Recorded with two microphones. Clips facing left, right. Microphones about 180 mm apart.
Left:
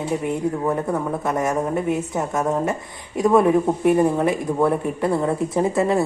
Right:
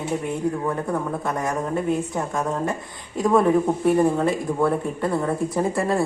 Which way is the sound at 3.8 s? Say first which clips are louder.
Left 2 dB; 15° left (ahead or behind).